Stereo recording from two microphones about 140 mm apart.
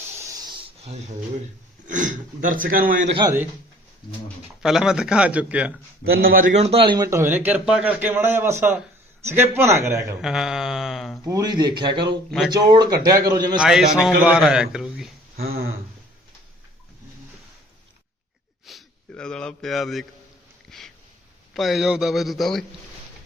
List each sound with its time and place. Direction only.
0.0 s hiss: 20° right (ahead or behind)
1.9 s speech: 65° right (ahead or behind)
4.6 s a man's voice: 5° right (ahead or behind)
6.1 s a man's voice: 90° right
6.5 s a man's voice: 50° right (ahead or behind); by 10.2 s 20° right (ahead or behind)
10.2 s a man's voice: 5° right (ahead or behind)
11.3 s a man's voice: 25° right (ahead or behind)
13.6 s a man's voice: 5° right (ahead or behind)
15.4 s a sound: 90° right
18.6 s speech: 5° left (ahead or behind)
20.7 s a sound: centre (ahead or behind)
21.5 s a man's voice: centre (ahead or behind)